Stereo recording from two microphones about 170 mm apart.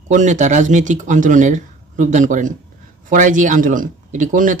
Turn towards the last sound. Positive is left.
turn(degrees=-50)  # may be behind; listen again after turning